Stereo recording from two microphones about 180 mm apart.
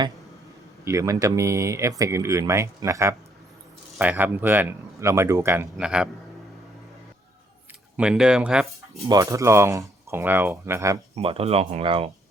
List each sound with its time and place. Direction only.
0.9 s speech: 15° right (ahead or behind)
7.9 s speech: 5° right (ahead or behind)
9.0 s speech: 20° right (ahead or behind)
11.1 s speech: 30° right (ahead or behind)